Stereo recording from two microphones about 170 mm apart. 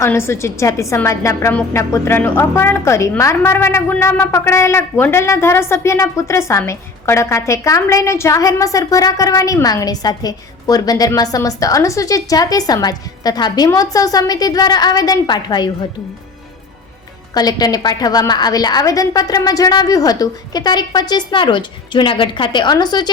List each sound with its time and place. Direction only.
0.0 s a woman's voice: 15° left (ahead or behind)
17.3 s a woman's voice: 25° left (ahead or behind)